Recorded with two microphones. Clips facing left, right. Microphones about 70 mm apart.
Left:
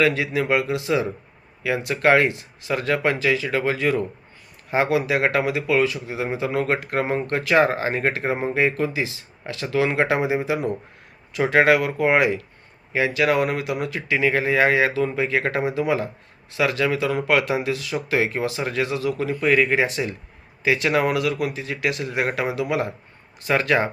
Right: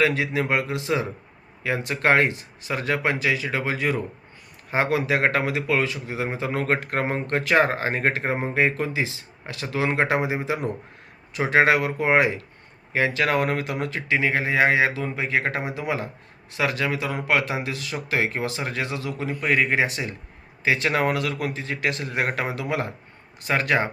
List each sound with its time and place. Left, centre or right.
0.0 s speech: right
23.5 s speech: right